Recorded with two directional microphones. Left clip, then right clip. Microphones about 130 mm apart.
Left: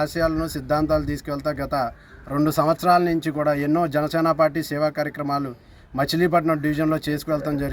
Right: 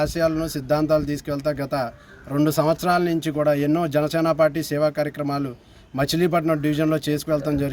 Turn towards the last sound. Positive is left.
turn(degrees=-15)  # may be behind; listen again after turning